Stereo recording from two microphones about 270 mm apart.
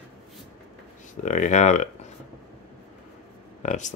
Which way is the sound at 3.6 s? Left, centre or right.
Left.